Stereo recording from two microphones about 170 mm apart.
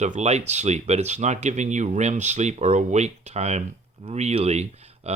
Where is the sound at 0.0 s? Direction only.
40° right (ahead or behind).